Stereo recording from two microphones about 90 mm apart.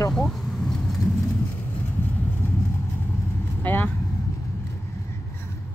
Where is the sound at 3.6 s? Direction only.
20° left (ahead or behind).